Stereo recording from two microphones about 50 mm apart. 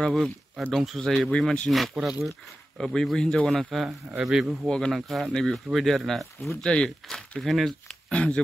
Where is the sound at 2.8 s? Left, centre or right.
Centre.